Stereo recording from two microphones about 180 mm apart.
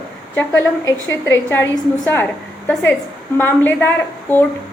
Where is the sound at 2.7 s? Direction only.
5° left (ahead or behind).